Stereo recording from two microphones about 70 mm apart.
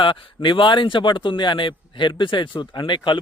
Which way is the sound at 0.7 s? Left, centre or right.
Left.